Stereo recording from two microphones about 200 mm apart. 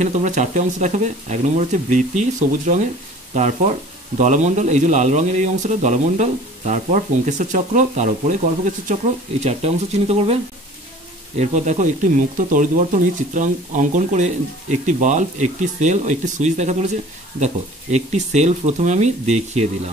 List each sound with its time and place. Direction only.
0.0 s speech: 35° right (ahead or behind)
9.4 s speech: 35° right (ahead or behind)
17.9 s speech: 35° right (ahead or behind)